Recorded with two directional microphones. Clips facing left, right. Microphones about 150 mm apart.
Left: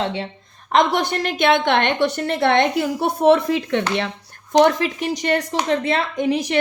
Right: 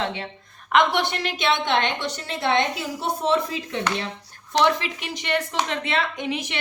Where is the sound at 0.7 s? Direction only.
40° left (ahead or behind); by 4.4 s 65° left (ahead or behind).